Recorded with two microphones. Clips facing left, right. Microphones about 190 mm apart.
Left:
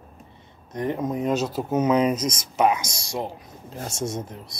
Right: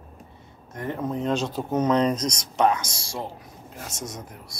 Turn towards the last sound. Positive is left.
turn(degrees=25)  # may be behind; listen again after turning